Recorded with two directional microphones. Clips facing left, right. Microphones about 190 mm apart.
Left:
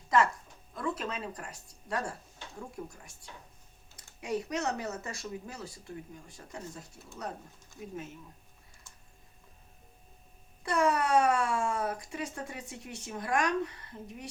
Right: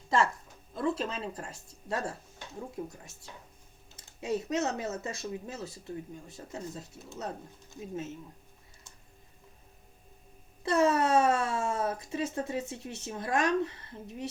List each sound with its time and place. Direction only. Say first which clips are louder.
0.1 s speech: left 1 dB; 30° right (ahead or behind)
3.9 s speech: right 2 dB; 25° right (ahead or behind)
10.6 s speech: right 3 dB; 25° right (ahead or behind)